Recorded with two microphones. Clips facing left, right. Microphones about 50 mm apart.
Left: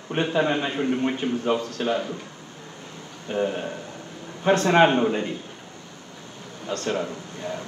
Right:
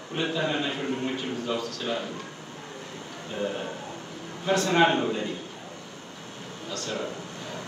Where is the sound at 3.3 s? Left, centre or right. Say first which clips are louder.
Left 5 dB; left.